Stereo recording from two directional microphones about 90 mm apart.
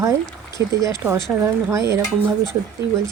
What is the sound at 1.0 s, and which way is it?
Speech, 25° right (ahead or behind).